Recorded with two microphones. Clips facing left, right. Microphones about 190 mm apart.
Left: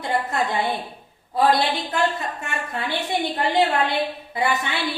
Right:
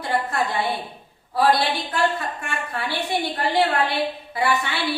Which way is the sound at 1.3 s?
20° left (ahead or behind).